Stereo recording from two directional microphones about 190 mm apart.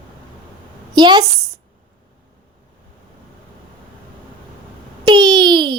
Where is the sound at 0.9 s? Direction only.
20° right (ahead or behind).